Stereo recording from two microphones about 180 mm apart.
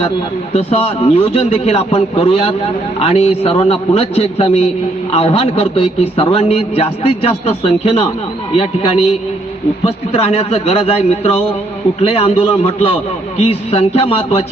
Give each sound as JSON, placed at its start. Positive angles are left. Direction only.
{"t": 0.5, "sound": "a man's voice", "side_deg": 35}